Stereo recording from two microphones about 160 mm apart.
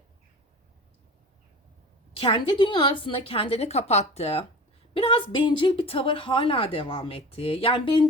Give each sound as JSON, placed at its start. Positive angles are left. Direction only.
{"t": 2.2, "sound": "speech", "side_deg": 35}